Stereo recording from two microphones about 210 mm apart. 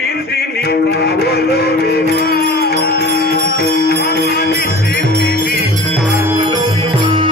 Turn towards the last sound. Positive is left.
turn(degrees=-25)  # may be behind; listen again after turning